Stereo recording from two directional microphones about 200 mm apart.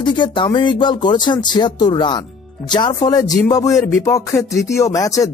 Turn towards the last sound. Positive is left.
turn(degrees=15)  # may be behind; listen again after turning